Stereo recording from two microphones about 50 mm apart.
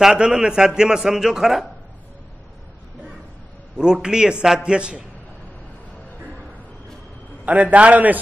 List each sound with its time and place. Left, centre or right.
0.0 s a man's voice: centre
3.7 s a man's voice: centre
7.4 s a man's voice: right